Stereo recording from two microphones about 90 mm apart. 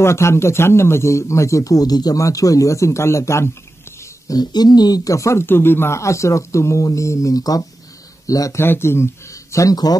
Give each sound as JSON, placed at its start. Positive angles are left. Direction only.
{"t": 0.0, "sound": "speech", "side_deg": 30}
{"t": 4.0, "sound": "speech", "side_deg": 45}
{"t": 8.6, "sound": "speech", "side_deg": 25}